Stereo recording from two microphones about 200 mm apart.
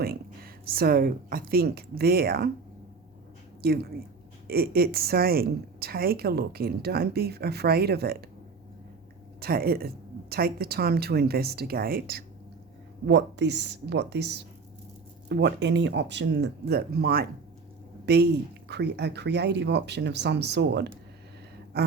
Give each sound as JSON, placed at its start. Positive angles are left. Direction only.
{"t": 0.0, "sound": "speech", "side_deg": -50}
{"t": 3.6, "sound": "a woman's voice", "side_deg": -50}
{"t": 9.4, "sound": "a woman's voice", "side_deg": -50}
{"t": 13.1, "sound": "a woman's voice", "side_deg": -60}